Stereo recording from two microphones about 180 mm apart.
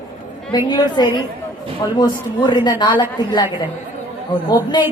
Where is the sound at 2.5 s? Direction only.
25° left (ahead or behind).